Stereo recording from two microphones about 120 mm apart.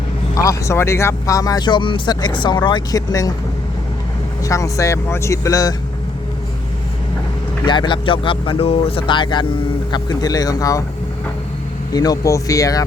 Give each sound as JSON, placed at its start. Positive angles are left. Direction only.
{"t": 0.3, "sound": "speech", "side_deg": 25}
{"t": 4.4, "sound": "speech", "side_deg": 25}
{"t": 7.6, "sound": "speech", "side_deg": 40}
{"t": 11.9, "sound": "speech", "side_deg": 30}